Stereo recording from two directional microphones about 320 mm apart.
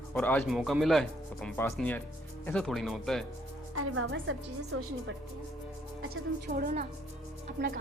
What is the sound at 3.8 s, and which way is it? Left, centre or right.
A woman's voice, right.